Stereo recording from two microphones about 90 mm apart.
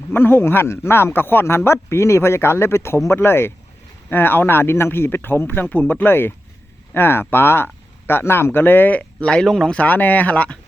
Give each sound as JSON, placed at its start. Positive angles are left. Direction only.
{"t": 0.1, "sound": "speech", "side_deg": 25}
{"t": 9.7, "sound": "speech", "side_deg": 20}